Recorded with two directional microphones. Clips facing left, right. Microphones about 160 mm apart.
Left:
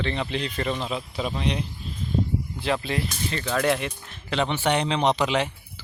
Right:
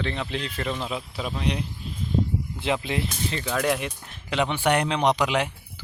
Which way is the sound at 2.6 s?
20° right (ahead or behind).